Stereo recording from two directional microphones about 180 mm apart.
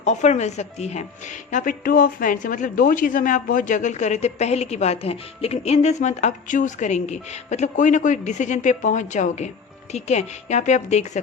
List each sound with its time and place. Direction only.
0.0 s a woman's voice: 40° left (ahead or behind)